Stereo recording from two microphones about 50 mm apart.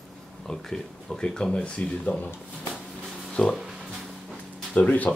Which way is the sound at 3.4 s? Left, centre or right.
Left.